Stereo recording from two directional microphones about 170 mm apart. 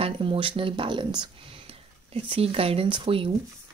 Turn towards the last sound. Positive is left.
turn(degrees=-30)  # may be behind; listen again after turning